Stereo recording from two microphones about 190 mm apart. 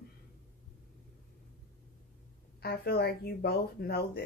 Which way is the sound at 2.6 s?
55° left (ahead or behind).